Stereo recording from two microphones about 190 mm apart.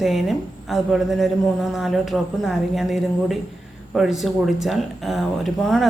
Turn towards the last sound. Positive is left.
turn(degrees=0)  # may be behind; listen again after turning